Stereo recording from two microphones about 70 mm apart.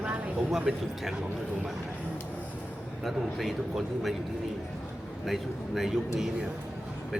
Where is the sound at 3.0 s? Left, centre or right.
Centre.